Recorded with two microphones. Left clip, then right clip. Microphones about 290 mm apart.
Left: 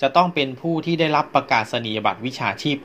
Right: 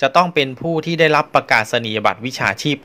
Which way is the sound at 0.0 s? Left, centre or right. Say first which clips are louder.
Right 3 dB; right.